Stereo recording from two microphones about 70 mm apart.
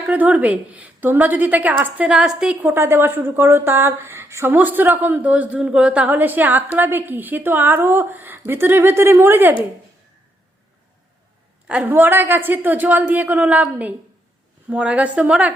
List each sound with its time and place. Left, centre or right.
0.1 s a woman's voice: right
2.0 s a woman's voice: centre
2.6 s a woman's voice: right; by 6.1 s centre
6.1 s a woman's voice: right
11.7 s a woman's voice: right